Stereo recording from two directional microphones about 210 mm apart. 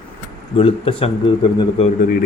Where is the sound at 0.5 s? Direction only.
25° left (ahead or behind).